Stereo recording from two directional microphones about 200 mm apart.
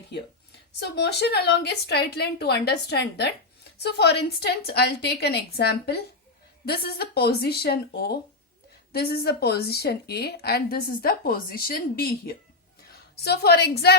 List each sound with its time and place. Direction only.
0.8 s a woman's voice: 55° left (ahead or behind)